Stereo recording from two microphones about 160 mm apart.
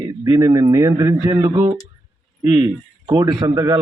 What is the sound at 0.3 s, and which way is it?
A man's voice, 20° right (ahead or behind).